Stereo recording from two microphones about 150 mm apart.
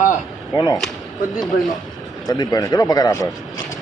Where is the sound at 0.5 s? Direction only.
25° left (ahead or behind).